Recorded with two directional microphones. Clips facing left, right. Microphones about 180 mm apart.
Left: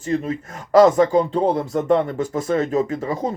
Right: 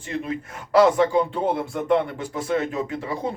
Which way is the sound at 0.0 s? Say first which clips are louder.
Left 5 dB; 45° left (ahead or behind).